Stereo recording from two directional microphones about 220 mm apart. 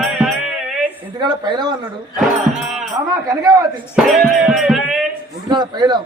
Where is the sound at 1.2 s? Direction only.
20° right (ahead or behind).